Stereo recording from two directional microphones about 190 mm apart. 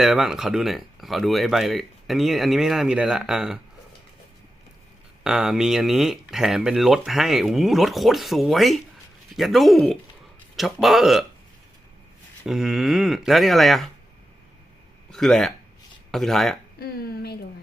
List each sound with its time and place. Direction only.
0.0 s speech: centre (ahead or behind)
5.2 s speech: 5° right (ahead or behind)
12.5 s speech: centre (ahead or behind)
15.1 s speech: centre (ahead or behind)
16.8 s a sound: 55° left (ahead or behind)